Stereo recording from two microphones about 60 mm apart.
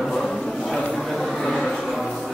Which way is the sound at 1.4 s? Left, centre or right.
Centre.